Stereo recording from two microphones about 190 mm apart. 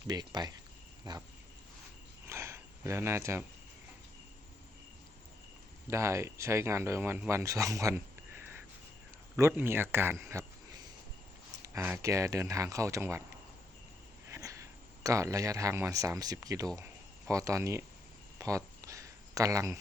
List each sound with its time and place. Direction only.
0.1 s speech: 20° right (ahead or behind)
2.2 s a sound: 15° right (ahead or behind)
5.9 s speech: 15° right (ahead or behind)
9.3 s speech: 10° right (ahead or behind)
14.3 s speech: 15° right (ahead or behind)
18.3 s a sound: 15° right (ahead or behind)